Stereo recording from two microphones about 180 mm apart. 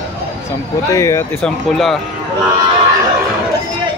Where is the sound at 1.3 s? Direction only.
Centre (ahead or behind).